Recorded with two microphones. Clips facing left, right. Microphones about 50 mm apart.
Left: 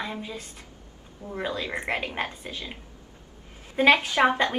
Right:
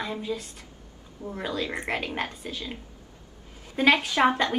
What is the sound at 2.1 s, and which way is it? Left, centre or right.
Speech, left.